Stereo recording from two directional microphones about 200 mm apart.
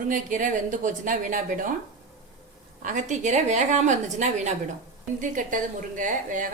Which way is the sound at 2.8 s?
40° right (ahead or behind).